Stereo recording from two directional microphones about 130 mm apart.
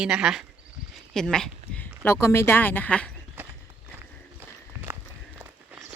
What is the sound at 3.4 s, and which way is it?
Clip-clop, 15° right (ahead or behind).